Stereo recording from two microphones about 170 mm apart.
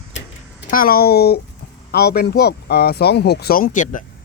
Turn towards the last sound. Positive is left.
turn(degrees=50)  # may be behind; listen again after turning